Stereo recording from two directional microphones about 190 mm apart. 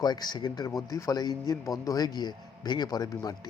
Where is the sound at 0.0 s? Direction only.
20° left (ahead or behind).